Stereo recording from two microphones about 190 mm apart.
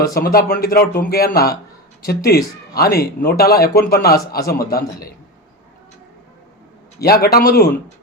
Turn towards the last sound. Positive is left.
turn(degrees=50)  # may be behind; listen again after turning